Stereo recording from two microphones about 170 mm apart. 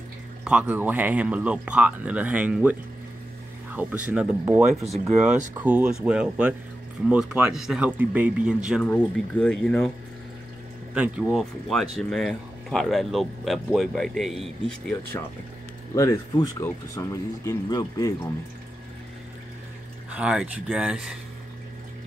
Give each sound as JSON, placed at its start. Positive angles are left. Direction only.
{"t": 0.5, "sound": "speech", "side_deg": -10}
{"t": 8.8, "sound": "speech", "side_deg": 5}
{"t": 11.0, "sound": "speech", "side_deg": -5}
{"t": 15.9, "sound": "speech", "side_deg": 20}
{"t": 20.1, "sound": "speech", "side_deg": -5}